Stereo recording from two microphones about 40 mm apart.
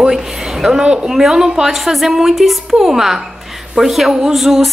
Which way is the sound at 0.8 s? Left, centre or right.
Right.